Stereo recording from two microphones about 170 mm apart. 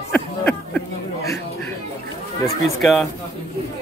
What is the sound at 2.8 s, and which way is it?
Speech, centre (ahead or behind).